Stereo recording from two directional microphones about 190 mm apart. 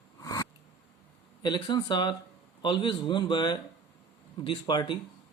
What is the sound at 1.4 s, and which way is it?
Speech, 25° left (ahead or behind).